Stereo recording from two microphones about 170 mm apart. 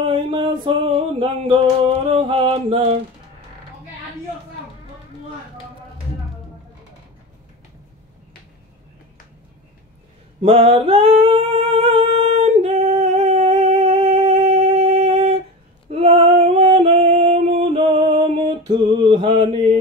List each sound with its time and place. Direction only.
0.1 s a sound: 30° right (ahead or behind)
10.4 s singing: 35° right (ahead or behind)
15.9 s female singing: 35° right (ahead or behind)
18.7 s mantra: 25° right (ahead or behind)